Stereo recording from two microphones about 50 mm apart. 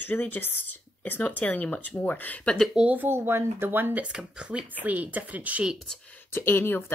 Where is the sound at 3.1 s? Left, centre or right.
Right.